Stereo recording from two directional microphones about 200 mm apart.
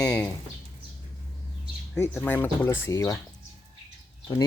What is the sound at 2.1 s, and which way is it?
Speech, 10° left (ahead or behind).